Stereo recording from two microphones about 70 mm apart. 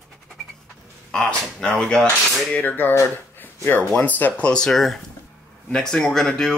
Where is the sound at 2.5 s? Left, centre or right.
Left.